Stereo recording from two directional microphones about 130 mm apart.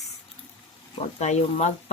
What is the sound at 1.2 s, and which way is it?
Speech, 60° left (ahead or behind).